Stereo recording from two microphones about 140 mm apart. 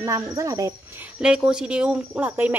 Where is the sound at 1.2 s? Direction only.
5° right (ahead or behind).